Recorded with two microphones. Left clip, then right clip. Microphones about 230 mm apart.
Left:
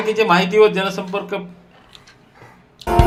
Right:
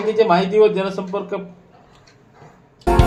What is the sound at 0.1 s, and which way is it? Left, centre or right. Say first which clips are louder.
A man's voice: even; left.